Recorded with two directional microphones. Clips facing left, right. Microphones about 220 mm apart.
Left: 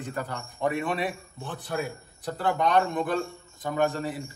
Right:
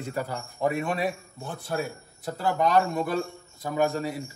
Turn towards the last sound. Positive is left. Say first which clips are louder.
# right 1 dB
turn(degrees=-10)  # may be behind; listen again after turning